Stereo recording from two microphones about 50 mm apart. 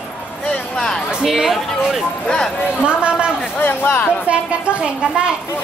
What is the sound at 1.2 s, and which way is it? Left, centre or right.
Speech, centre.